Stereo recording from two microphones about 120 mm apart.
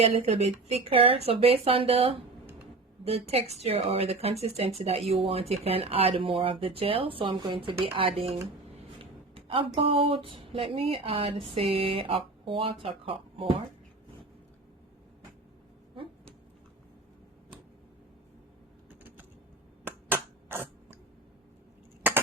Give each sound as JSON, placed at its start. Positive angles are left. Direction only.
{"t": 0.0, "sound": "a woman's voice", "side_deg": -60}
{"t": 19.8, "sound": "finger snapping", "side_deg": -20}
{"t": 22.0, "sound": "a sound", "side_deg": -15}